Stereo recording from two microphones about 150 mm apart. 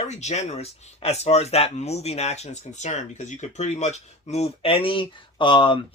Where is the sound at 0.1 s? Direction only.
50° left (ahead or behind).